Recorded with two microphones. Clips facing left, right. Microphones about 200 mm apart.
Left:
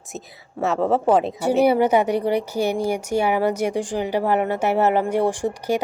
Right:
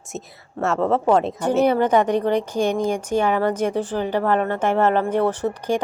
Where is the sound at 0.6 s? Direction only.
Centre (ahead or behind).